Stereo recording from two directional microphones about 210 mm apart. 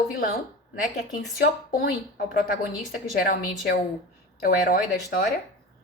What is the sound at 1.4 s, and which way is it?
Speech, 45° left (ahead or behind).